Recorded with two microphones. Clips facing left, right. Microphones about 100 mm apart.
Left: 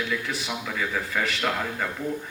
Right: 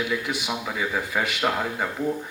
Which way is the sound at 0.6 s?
20° right (ahead or behind).